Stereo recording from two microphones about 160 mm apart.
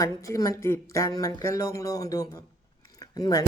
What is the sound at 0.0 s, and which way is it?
A woman's voice, 20° left (ahead or behind).